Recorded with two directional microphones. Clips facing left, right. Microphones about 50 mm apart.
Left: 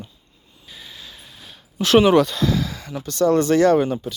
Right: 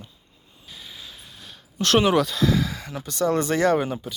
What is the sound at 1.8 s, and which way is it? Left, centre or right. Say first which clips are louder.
Speech: left 5 dB; centre.